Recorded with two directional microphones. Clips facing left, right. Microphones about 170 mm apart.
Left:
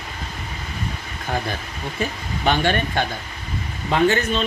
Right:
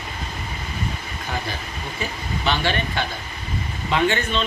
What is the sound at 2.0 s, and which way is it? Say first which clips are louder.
Speech: left 3 dB; 50° left (ahead or behind).